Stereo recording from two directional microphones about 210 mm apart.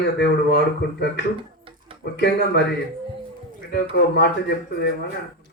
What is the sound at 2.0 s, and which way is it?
Speech, 55° left (ahead or behind).